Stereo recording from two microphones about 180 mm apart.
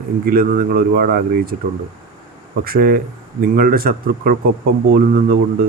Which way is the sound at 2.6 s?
55° right (ahead or behind).